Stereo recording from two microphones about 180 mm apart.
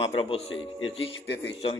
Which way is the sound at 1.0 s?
80° left.